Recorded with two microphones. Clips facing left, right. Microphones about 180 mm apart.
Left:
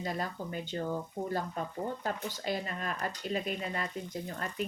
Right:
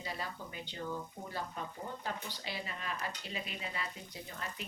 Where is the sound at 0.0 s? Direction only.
45° left (ahead or behind).